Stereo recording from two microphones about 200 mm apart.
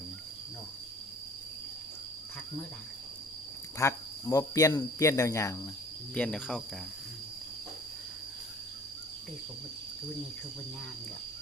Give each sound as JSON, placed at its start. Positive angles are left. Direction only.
{"t": 3.8, "sound": "speech", "side_deg": 15}
{"t": 6.1, "sound": "speech", "side_deg": 5}